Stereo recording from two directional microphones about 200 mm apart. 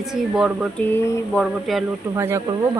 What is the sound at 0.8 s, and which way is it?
A woman's voice, 5° left (ahead or behind).